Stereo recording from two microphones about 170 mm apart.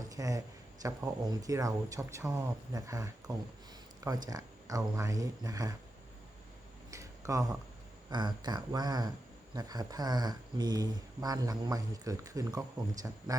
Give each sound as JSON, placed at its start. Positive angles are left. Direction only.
{"t": 0.1, "sound": "speech", "side_deg": -20}
{"t": 6.9, "sound": "a sound", "side_deg": -20}
{"t": 8.1, "sound": "speech", "side_deg": -25}